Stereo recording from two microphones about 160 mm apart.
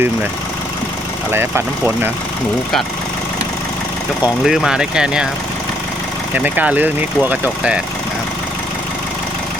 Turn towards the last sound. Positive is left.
turn(degrees=-10)  # may be behind; listen again after turning